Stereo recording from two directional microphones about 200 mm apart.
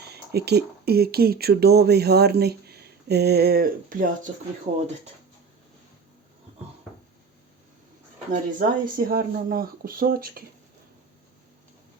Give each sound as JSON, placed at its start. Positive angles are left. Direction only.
{"t": 0.0, "sound": "speech", "side_deg": -55}
{"t": 8.3, "sound": "speech", "side_deg": -45}